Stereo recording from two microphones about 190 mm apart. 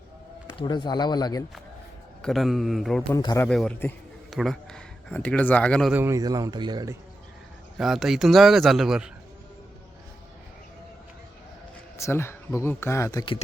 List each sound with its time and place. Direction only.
0.6 s speech: 20° left (ahead or behind)
2.2 s speech: centre (ahead or behind)
3.1 s speech: 15° left (ahead or behind)
3.4 s a man's voice: 5° left (ahead or behind)
5.9 s a man's voice: 15° right (ahead or behind)
7.8 s speech: centre (ahead or behind)
11.9 s speech: 15° left (ahead or behind)